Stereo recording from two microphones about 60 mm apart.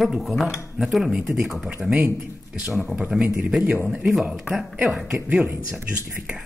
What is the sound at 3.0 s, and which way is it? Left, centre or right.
Speech, centre.